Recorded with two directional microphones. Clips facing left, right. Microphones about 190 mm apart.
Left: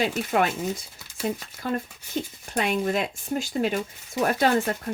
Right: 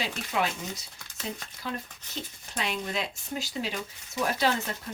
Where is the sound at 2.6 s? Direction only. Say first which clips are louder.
Left 7 dB; 50° left (ahead or behind).